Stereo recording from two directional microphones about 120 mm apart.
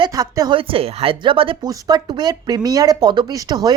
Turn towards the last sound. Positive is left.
turn(degrees=-35)  # may be behind; listen again after turning